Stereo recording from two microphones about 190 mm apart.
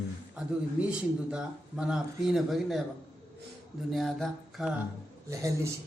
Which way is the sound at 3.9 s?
Centre (ahead or behind).